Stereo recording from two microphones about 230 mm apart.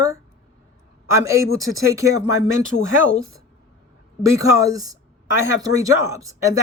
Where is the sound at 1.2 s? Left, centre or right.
Centre.